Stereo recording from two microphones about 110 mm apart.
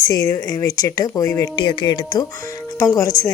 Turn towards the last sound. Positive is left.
turn(degrees=35)  # may be behind; listen again after turning